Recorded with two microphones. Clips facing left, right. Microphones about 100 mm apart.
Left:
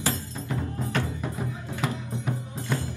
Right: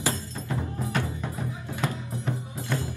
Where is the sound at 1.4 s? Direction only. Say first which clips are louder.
Right 1 dB; 15° left (ahead or behind).